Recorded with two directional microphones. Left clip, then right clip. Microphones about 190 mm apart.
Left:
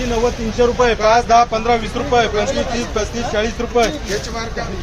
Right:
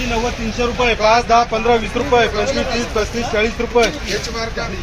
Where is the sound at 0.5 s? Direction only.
Centre (ahead or behind).